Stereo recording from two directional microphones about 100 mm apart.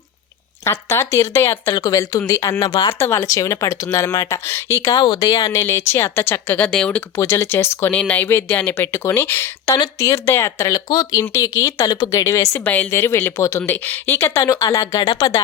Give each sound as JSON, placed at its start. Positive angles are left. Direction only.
{"t": 0.6, "sound": "speech", "side_deg": 25}
{"t": 4.4, "sound": "speech", "side_deg": 30}
{"t": 4.9, "sound": "speech", "side_deg": 45}
{"t": 7.2, "sound": "speech", "side_deg": 25}
{"t": 12.6, "sound": "speech", "side_deg": 15}